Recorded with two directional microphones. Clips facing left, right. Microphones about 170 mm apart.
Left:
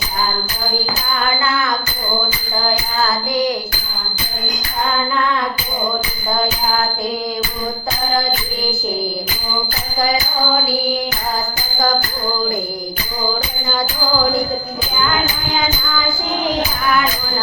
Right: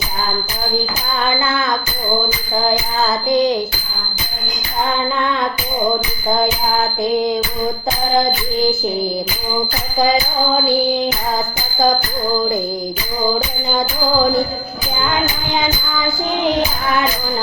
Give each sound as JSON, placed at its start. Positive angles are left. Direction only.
{"t": 1.2, "sound": "music", "side_deg": -20}
{"t": 10.0, "sound": "music", "side_deg": -20}